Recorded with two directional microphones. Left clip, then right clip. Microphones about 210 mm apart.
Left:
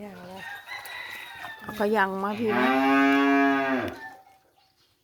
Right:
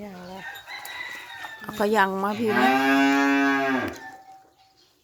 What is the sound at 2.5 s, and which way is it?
Moo, 50° right (ahead or behind).